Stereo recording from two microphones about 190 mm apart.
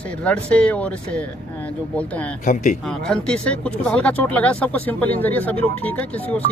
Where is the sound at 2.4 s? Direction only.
45° left (ahead or behind).